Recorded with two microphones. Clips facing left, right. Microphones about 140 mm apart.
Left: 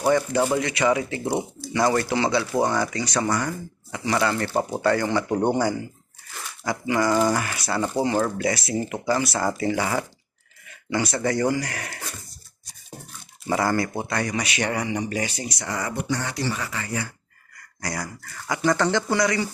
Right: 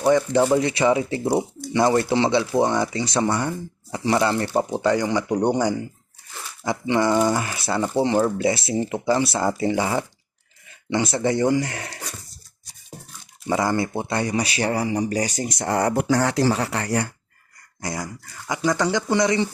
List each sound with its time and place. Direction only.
0.5 s speech: 30° right (ahead or behind)
13.5 s speech: 20° right (ahead or behind); by 17.1 s 70° right (ahead or behind)
17.7 s speech: 20° right (ahead or behind)
19.1 s speech: 25° right (ahead or behind)